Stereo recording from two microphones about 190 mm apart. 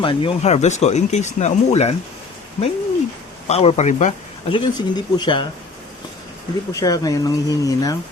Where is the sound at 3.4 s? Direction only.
35° left (ahead or behind).